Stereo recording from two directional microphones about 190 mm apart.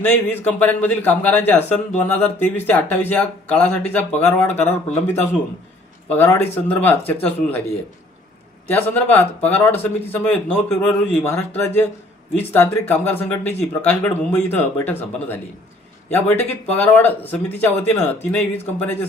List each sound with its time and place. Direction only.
0.0 s speech: 10° left (ahead or behind)
8.7 s speech: 10° left (ahead or behind)